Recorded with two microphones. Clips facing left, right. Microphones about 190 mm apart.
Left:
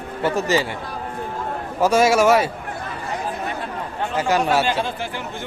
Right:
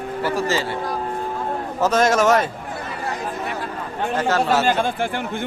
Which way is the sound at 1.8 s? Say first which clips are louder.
Left 2 dB; 10° left (ahead or behind).